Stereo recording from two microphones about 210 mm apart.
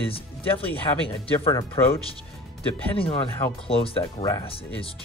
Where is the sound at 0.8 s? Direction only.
25° left (ahead or behind).